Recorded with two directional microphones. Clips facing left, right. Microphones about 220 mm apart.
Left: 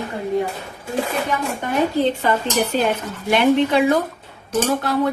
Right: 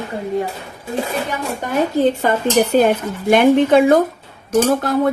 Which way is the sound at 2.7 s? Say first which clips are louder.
Right 6 dB; 45° right (ahead or behind).